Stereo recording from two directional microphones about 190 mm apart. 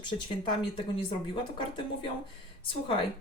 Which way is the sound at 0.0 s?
25° left (ahead or behind).